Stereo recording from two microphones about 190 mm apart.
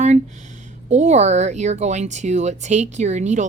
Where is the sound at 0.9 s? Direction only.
35° right (ahead or behind).